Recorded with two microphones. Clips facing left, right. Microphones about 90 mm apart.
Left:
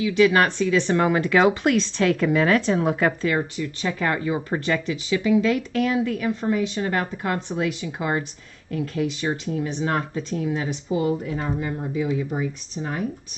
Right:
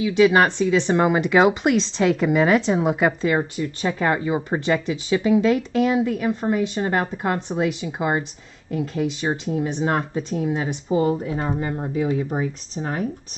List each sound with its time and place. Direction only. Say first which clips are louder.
0.0 s speech: right 2 dB; 20° right (ahead or behind)
10.9 s speech: right 3 dB; 35° right (ahead or behind)